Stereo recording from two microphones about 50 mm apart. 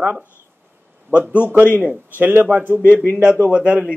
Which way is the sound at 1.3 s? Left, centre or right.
Right.